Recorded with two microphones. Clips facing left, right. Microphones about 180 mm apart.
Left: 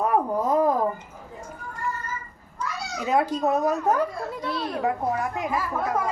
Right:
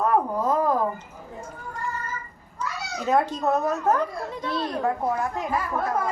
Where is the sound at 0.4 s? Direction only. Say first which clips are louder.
Left 2 dB; 15° left (ahead or behind).